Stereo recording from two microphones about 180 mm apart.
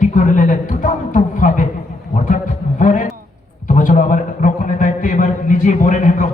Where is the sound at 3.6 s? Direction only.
45° left (ahead or behind).